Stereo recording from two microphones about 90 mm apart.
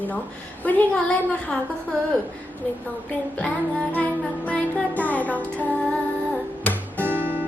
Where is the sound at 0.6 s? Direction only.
20° left (ahead or behind).